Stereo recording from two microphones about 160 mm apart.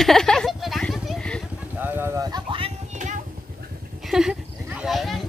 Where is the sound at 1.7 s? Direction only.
15° right (ahead or behind); by 2.7 s 30° right (ahead or behind).